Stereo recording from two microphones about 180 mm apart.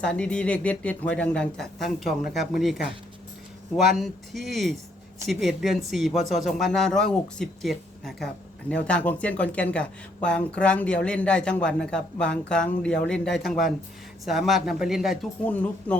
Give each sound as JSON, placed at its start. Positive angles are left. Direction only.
{"t": 0.0, "sound": "speech", "side_deg": 5}
{"t": 4.0, "sound": "speech", "side_deg": 0}